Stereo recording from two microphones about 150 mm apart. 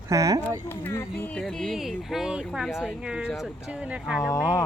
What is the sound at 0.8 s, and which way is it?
Speech, 15° left (ahead or behind).